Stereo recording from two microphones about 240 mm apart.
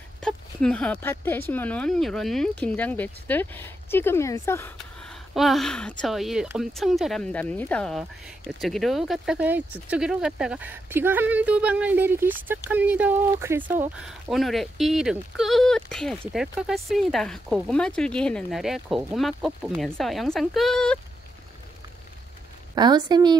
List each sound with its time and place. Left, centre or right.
0.2 s speech: centre
22.8 s a woman's voice: centre